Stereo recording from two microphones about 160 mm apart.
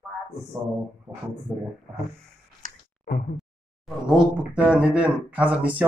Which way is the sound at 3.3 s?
Centre (ahead or behind).